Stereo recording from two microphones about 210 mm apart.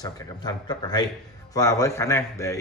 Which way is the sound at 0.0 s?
20° left (ahead or behind).